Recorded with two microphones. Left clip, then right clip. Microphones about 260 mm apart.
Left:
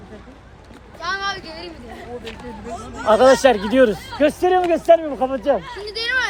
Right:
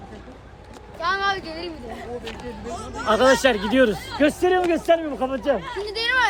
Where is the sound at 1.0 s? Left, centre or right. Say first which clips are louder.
Right 2 dB; right.